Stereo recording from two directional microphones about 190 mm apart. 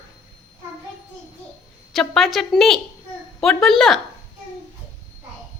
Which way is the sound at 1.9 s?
Centre (ahead or behind).